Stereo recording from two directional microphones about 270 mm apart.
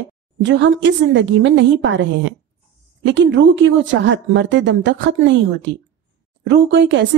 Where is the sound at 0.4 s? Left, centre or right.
Right.